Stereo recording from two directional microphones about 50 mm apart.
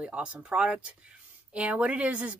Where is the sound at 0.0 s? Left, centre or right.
Right.